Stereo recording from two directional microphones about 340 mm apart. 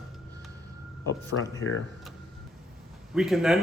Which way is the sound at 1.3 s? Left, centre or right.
Left.